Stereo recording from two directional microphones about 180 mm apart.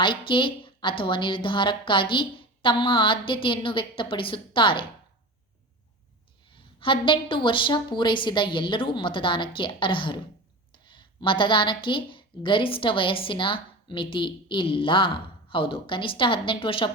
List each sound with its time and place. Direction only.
0.0 s a woman's voice: 25° left (ahead or behind)
6.7 s a woman's voice: 25° left (ahead or behind)